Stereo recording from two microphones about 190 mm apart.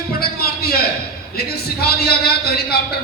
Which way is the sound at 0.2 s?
55° left (ahead or behind).